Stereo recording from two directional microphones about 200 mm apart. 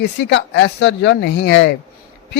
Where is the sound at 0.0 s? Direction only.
65° left (ahead or behind).